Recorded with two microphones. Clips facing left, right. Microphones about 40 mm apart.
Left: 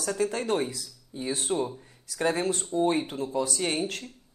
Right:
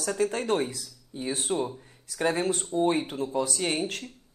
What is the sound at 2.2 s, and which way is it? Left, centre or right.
A woman's voice, right.